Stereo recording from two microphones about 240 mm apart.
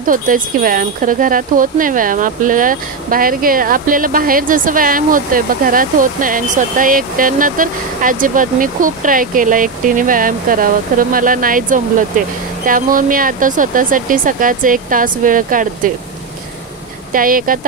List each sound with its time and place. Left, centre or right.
0.0 s speech: right
17.1 s speech: right